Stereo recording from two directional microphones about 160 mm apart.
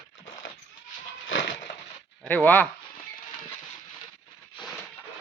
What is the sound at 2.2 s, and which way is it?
Speech, 10° left (ahead or behind).